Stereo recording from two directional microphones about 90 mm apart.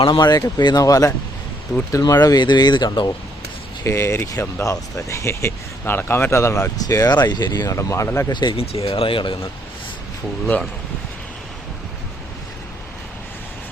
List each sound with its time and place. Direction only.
0.2 s speech: 45° left (ahead or behind); by 3.1 s 65° left (ahead or behind)
3.8 s speech: 30° left (ahead or behind); by 7.8 s 50° left (ahead or behind)
7.8 s speech: 35° left (ahead or behind)
8.3 s speech: 55° left (ahead or behind)
8.5 s speech: 90° left; by 9.4 s 70° left (ahead or behind)
10.4 s speech: 15° left (ahead or behind)